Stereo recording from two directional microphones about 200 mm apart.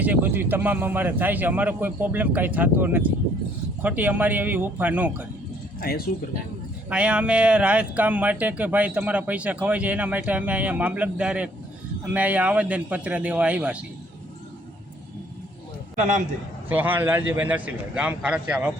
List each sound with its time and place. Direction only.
0.0 s speech: 10° right (ahead or behind)
5.8 s speech: 50° left (ahead or behind)
6.9 s speech: 5° right (ahead or behind)
16.6 s speech: 10° right (ahead or behind)